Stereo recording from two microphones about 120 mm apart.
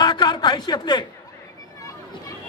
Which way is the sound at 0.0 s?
40° left (ahead or behind).